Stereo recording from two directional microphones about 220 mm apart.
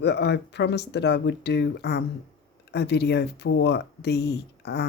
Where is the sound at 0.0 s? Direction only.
50° left (ahead or behind).